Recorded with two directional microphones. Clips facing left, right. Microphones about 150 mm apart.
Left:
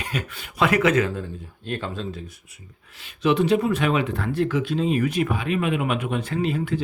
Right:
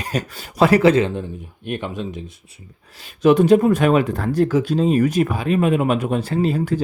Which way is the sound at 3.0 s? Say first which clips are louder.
Right 6 dB; 45° right (ahead or behind).